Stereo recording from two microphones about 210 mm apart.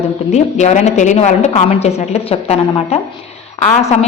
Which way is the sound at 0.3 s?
35° left (ahead or behind).